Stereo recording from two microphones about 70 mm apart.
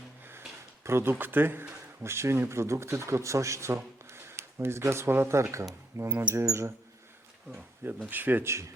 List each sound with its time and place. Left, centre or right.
0.9 s speech: right
8.0 s speech: right
8.4 s speech: right